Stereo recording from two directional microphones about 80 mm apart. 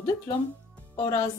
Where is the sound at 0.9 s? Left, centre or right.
Left.